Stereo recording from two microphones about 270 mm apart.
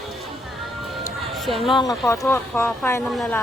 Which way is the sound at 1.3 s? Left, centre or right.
Centre.